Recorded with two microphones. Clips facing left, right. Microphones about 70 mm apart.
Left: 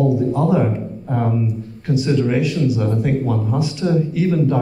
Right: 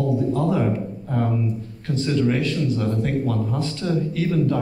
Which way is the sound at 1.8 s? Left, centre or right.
Centre.